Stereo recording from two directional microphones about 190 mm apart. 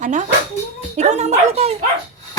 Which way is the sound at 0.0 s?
40° right (ahead or behind).